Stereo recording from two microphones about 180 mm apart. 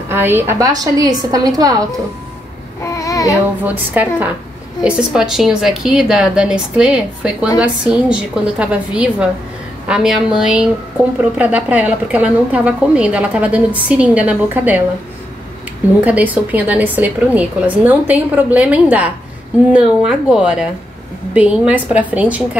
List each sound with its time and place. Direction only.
0.1 s a woman's voice: 10° right (ahead or behind)
2.8 s babbling: 15° left (ahead or behind)
3.6 s a woman's voice: 10° right (ahead or behind)
16.0 s a woman's voice: 10° right (ahead or behind)